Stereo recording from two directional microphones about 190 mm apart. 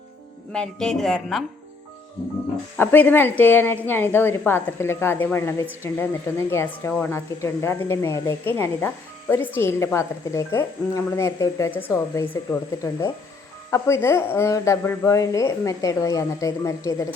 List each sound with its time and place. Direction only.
0.5 s speech: 5° left (ahead or behind)
2.7 s speech: 10° left (ahead or behind)